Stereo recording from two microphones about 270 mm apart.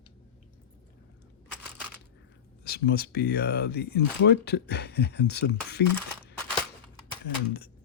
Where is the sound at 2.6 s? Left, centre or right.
Left.